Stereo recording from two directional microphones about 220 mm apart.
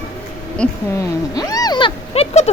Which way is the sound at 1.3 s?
15° left (ahead or behind).